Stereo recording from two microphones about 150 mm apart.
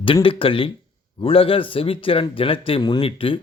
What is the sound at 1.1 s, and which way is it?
Speech, 40° left (ahead or behind).